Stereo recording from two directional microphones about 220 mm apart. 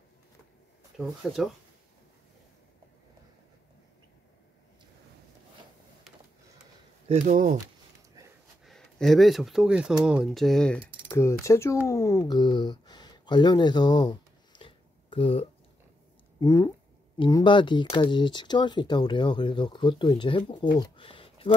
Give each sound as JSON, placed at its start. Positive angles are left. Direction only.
{"t": 0.9, "sound": "speech", "side_deg": 0}
{"t": 7.1, "sound": "speech", "side_deg": -35}
{"t": 8.6, "sound": "speech", "side_deg": 0}
{"t": 11.9, "sound": "a sound", "side_deg": 15}
{"t": 16.3, "sound": "speech", "side_deg": 15}